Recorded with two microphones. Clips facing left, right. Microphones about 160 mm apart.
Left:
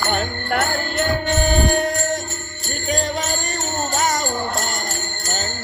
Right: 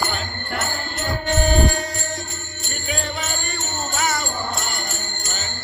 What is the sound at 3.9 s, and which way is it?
Jingle bell, 40° left (ahead or behind).